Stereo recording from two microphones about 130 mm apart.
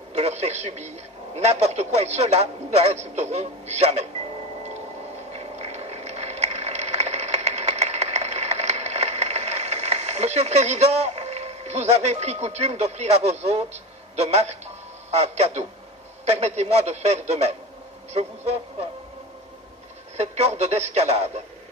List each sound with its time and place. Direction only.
0.1 s a man's voice: 55° right (ahead or behind)
5.3 s a sound: 50° right (ahead or behind)
14.1 s a man's voice: 55° right (ahead or behind)
20.2 s a man's voice: 55° right (ahead or behind)